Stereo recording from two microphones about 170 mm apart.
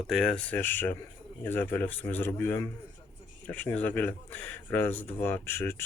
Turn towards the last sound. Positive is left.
turn(degrees=15)  # may be behind; listen again after turning